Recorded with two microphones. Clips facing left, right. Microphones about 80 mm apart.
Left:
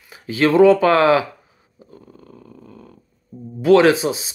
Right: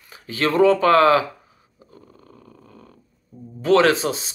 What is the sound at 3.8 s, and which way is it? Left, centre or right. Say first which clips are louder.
Speech: left 3 dB; centre.